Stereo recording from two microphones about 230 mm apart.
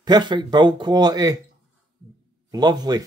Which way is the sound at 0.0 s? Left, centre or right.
Centre.